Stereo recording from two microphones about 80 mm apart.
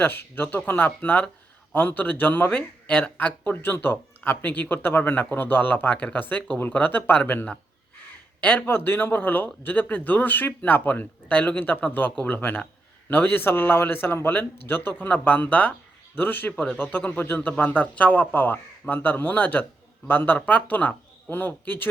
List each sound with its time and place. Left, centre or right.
0.0 s speech: left